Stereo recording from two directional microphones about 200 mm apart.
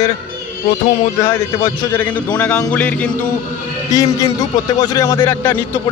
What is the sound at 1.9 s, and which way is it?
A man's voice, 10° left (ahead or behind).